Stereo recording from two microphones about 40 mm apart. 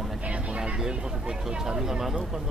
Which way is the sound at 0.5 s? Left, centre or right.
Centre.